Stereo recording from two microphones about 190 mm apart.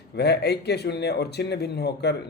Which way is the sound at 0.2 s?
60° left (ahead or behind).